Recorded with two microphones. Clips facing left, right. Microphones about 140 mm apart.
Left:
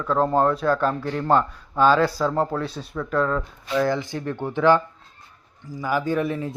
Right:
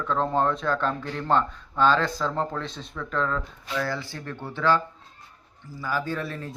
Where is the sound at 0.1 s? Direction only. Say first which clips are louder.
Left 5 dB; 10° left (ahead or behind).